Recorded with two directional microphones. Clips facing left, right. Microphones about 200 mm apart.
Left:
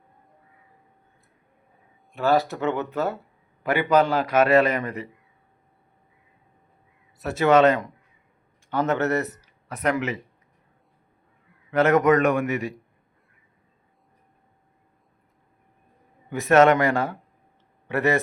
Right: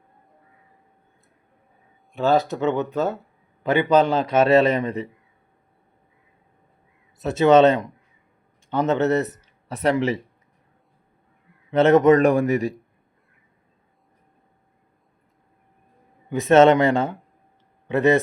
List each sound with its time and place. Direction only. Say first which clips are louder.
2.2 s a man's voice: right 2 dB; 20° right (ahead or behind)
7.2 s a man's voice: right 3 dB; 20° right (ahead or behind)
11.7 s a man's voice: right 4 dB; 25° right (ahead or behind)
16.3 s a man's voice: right 3 dB; 20° right (ahead or behind)